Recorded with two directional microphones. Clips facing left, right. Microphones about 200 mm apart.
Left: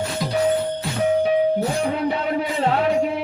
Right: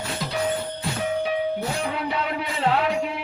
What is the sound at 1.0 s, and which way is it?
Music, 40° left (ahead or behind).